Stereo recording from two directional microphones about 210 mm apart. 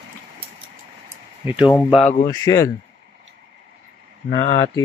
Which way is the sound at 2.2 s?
15° left (ahead or behind).